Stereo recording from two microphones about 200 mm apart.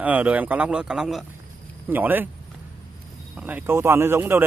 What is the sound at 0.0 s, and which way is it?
A man's voice, 10° right (ahead or behind).